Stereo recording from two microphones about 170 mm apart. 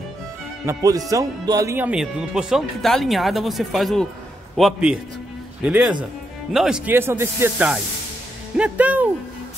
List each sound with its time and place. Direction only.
0.7 s speech: 20° right (ahead or behind)
1.9 s speech: 5° right (ahead or behind)